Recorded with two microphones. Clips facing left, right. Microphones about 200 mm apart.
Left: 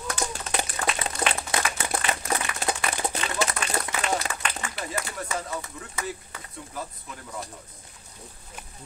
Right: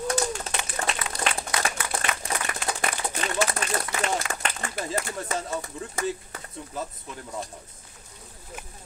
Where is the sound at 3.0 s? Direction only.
20° left (ahead or behind).